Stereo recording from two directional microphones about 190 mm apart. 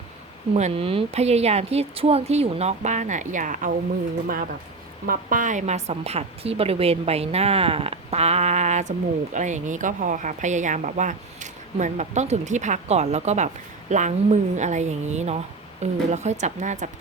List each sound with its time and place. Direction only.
0.5 s a woman's voice: 30° right (ahead or behind)
5.0 s a woman's voice: 45° right (ahead or behind)